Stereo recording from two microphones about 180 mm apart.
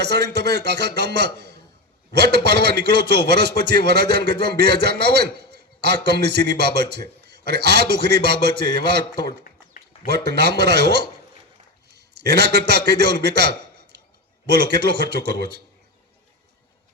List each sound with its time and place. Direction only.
0.0 s a man's voice: 65° right (ahead or behind)